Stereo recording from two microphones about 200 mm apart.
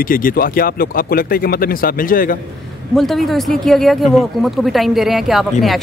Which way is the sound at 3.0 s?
Centre (ahead or behind).